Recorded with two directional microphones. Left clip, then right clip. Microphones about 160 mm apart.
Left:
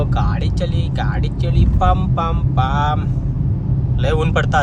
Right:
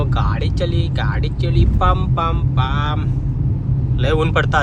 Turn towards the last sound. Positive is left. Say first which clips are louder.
# right 1 dB
turn(degrees=15)  # may be behind; listen again after turning